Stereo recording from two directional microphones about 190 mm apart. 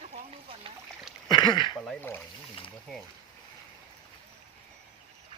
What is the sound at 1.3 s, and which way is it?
Speech, 25° left (ahead or behind).